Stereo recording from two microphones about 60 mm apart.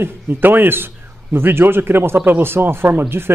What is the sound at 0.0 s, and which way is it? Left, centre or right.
Speech, right.